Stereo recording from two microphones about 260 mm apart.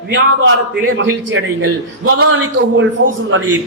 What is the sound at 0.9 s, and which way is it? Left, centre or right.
A man's voice, right.